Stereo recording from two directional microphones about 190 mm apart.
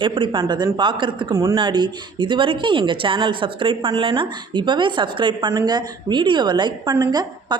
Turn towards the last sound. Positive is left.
turn(degrees=-20)  # may be behind; listen again after turning